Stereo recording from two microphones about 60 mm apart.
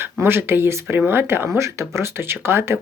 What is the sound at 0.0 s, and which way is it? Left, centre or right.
Speech, right.